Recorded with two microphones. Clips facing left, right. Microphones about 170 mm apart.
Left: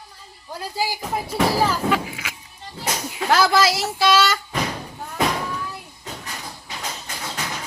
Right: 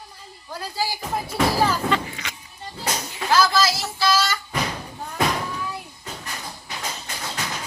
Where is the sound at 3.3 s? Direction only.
70° left (ahead or behind).